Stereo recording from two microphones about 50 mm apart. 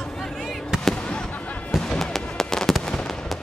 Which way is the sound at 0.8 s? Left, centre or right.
Centre.